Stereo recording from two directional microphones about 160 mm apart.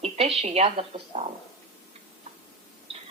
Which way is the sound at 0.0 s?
40° right (ahead or behind).